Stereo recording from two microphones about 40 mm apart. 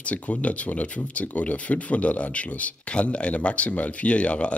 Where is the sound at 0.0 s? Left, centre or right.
Left.